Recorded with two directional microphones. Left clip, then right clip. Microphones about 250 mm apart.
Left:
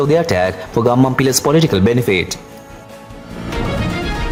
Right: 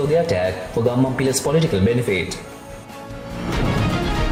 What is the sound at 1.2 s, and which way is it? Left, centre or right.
Speech, left.